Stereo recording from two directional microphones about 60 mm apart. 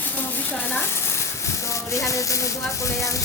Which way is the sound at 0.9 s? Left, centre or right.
Left.